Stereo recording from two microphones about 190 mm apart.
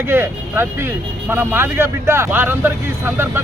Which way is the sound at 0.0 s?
10° right (ahead or behind).